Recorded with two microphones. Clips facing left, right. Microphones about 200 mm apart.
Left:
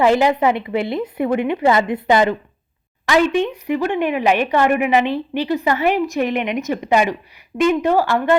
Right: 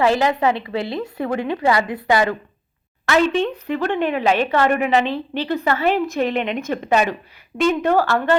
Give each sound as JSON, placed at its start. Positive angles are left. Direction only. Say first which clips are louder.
{"t": 0.0, "sound": "a woman's voice", "louder": "left 3 dB", "side_deg": 20}